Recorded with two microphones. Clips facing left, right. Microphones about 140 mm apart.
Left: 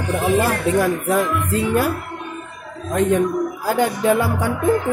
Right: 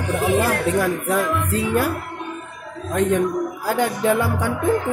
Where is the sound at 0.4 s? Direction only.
5° left (ahead or behind).